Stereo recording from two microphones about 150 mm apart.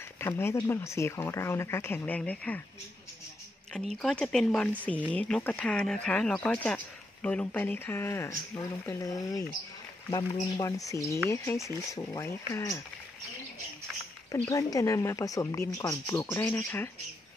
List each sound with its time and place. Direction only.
0.2 s speech: 15° left (ahead or behind)
3.9 s speech: 5° left (ahead or behind)
14.3 s speech: 20° left (ahead or behind)